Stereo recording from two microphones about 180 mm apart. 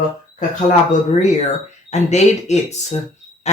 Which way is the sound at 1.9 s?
40° left (ahead or behind).